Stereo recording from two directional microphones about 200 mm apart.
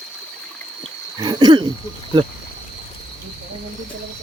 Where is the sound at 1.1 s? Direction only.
20° right (ahead or behind).